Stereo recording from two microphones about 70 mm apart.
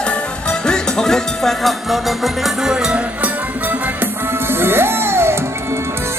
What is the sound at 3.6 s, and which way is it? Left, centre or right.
Music, right.